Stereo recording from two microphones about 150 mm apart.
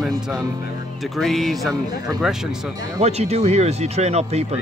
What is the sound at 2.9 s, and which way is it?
Speech, 45° right (ahead or behind).